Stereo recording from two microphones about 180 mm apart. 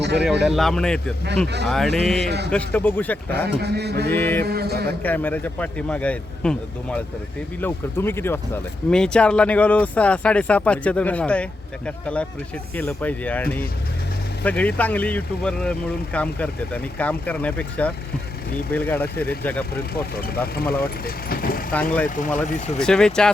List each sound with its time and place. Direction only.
0.0 s speech: 70° right (ahead or behind)
0.4 s speech: centre (ahead or behind)
3.3 s mantra: 65° right (ahead or behind)
4.1 s speech: 10° left (ahead or behind)
4.4 s mantra: 60° right (ahead or behind)
5.0 s speech: 10° left (ahead or behind)
19.9 s speech: 60° left (ahead or behind)
22.8 s speech: 5° left (ahead or behind)